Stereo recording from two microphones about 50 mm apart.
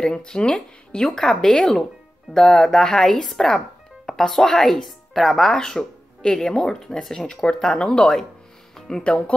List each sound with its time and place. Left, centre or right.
0.0 s speech: centre